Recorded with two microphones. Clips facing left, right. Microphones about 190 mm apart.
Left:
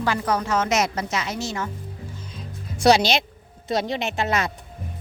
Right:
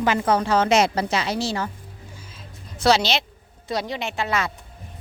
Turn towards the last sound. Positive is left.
turn(degrees=20)  # may be behind; listen again after turning